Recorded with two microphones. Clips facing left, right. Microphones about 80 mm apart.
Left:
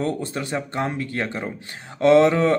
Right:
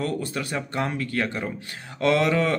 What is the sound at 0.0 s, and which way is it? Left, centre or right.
Speech, left.